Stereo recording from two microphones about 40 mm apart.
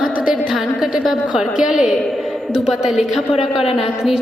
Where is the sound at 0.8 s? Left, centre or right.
Centre.